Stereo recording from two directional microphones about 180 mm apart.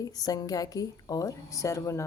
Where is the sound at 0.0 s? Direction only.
20° left (ahead or behind).